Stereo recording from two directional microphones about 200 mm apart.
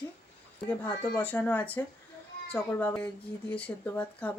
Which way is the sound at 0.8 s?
10° left (ahead or behind).